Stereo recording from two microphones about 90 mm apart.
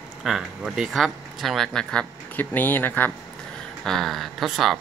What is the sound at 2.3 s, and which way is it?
Speech, 20° left (ahead or behind).